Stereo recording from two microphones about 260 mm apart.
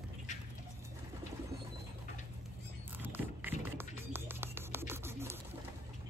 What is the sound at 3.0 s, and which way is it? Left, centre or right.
Music, centre.